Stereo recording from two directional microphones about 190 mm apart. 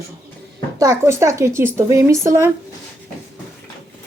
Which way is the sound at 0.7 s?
15° right (ahead or behind).